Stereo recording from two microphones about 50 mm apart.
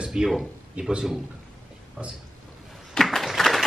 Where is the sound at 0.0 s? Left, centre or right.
Centre.